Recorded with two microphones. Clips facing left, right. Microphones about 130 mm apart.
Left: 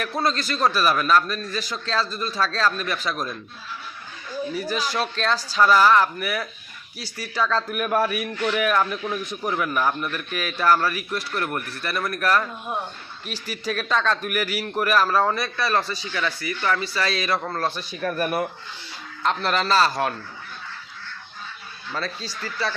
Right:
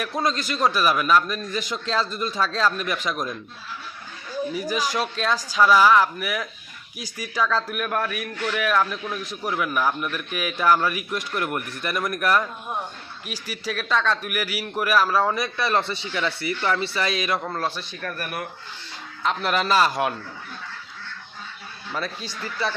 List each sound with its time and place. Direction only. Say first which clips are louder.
0.2 s a man's voice: even; 15° right (ahead or behind)
4.5 s a man's voice: even; 15° right (ahead or behind)
7.5 s a man's voice: left 2 dB; centre (ahead or behind)
15.5 s a man's voice: even; 20° right (ahead or behind)
17.4 s a man's voice: left 1 dB; 5° right (ahead or behind)
18.0 s speech: left 8 dB; 20° left (ahead or behind)
19.2 s a man's voice: even; 5° right (ahead or behind)
21.9 s a man's voice: even; 15° right (ahead or behind)